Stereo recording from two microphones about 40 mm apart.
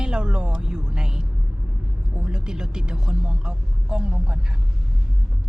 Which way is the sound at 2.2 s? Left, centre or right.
Centre.